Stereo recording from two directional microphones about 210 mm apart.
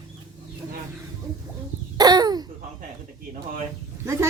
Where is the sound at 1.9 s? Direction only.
20° right (ahead or behind).